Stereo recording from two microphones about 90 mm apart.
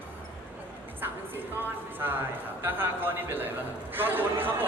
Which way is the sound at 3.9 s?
20° right (ahead or behind).